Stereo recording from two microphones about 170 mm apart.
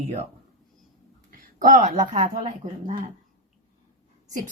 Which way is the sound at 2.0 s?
25° right (ahead or behind).